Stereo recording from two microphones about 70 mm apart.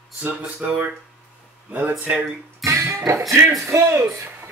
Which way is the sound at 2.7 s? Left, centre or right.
Right.